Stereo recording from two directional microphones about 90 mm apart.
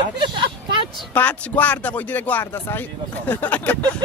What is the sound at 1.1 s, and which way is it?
Speech, 15° left (ahead or behind).